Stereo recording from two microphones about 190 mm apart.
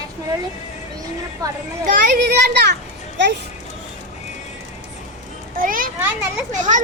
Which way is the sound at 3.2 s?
65° right (ahead or behind).